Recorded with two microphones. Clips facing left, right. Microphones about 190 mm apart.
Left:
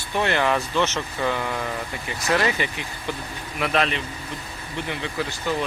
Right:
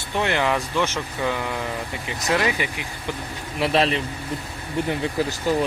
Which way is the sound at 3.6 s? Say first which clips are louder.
Right 3 dB; 30° right (ahead or behind).